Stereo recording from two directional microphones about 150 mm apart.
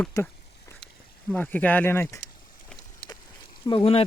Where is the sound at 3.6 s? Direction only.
40° left (ahead or behind).